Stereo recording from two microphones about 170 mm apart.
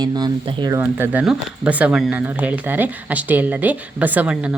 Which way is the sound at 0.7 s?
10° right (ahead or behind).